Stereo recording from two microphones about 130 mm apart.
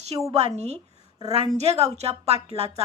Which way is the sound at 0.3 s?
55° right (ahead or behind).